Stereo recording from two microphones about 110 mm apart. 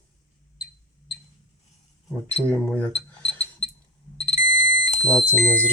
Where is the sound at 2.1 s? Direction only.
10° left (ahead or behind).